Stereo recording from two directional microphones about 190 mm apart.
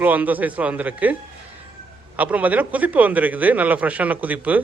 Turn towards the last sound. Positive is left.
turn(degrees=-10)  # may be behind; listen again after turning